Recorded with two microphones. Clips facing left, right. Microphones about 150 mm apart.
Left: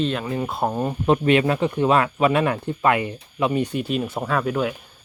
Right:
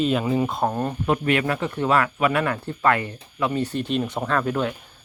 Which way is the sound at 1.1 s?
25° left (ahead or behind).